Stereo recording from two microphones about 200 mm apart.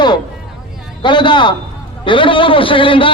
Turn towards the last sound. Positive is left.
turn(degrees=25)  # may be behind; listen again after turning